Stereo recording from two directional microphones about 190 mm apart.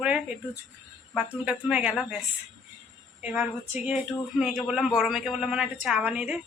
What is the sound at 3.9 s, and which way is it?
A man's voice, centre (ahead or behind).